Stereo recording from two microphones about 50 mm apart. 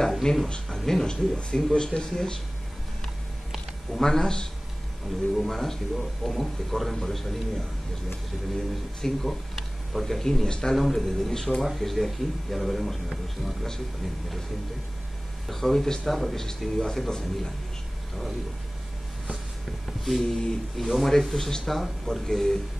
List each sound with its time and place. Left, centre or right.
0.2 s speech: centre
3.9 s speech: centre
5.3 s speech: centre
9.0 s speech: centre
10.8 s speech: centre
15.4 s speech: centre
20.1 s speech: centre
21.7 s speech: centre